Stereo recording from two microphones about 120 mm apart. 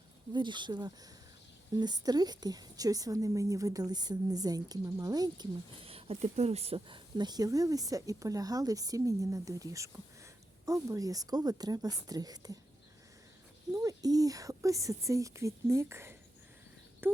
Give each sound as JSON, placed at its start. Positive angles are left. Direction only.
{"t": 0.3, "sound": "speech", "side_deg": -40}
{"t": 5.8, "sound": "speech", "side_deg": -55}
{"t": 13.7, "sound": "speech", "side_deg": -30}